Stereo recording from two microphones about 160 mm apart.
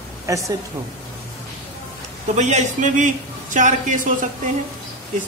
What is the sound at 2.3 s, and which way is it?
Speech, 45° right (ahead or behind).